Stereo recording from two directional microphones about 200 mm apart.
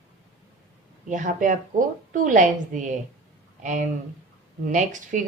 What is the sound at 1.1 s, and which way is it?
Speech, 40° right (ahead or behind).